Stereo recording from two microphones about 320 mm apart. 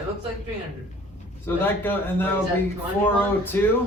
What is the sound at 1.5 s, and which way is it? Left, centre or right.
A man's voice, centre.